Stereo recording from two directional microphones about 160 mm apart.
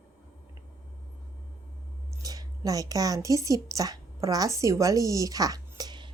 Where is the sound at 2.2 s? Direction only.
20° right (ahead or behind).